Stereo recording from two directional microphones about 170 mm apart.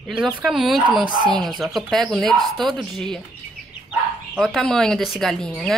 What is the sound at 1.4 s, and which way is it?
Speech, centre (ahead or behind).